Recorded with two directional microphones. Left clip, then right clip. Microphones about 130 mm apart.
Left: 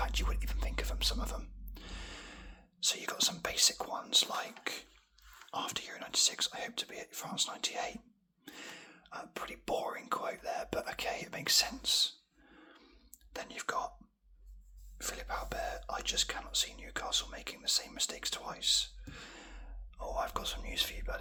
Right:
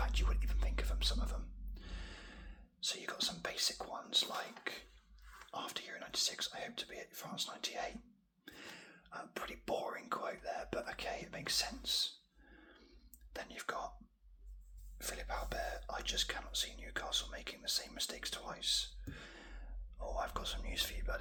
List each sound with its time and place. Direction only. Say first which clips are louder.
0.0 s whispering: left 5 dB; 30° left (ahead or behind)
14.9 s whispering: left 4 dB; 35° left (ahead or behind)